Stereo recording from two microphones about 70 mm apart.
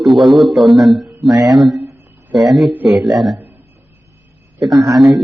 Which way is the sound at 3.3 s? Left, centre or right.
Right.